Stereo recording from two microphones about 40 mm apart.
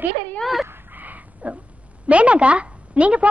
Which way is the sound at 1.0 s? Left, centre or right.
Right.